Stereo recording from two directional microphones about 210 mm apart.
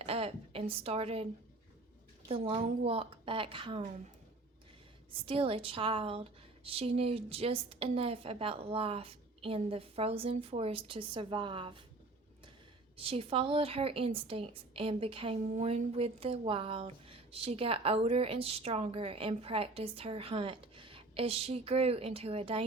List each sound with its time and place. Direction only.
0.0 s a woman's voice: 25° right (ahead or behind)
5.2 s a woman's voice: 25° right (ahead or behind)
13.0 s a woman's voice: 25° right (ahead or behind)